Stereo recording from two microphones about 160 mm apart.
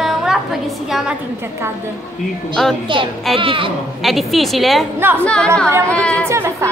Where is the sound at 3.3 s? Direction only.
35° right (ahead or behind).